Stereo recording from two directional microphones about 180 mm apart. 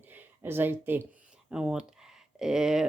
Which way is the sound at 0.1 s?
10° right (ahead or behind).